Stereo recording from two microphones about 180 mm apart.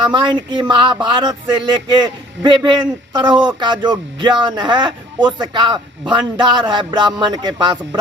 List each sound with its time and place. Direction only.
0.0 s a man's voice: 25° right (ahead or behind)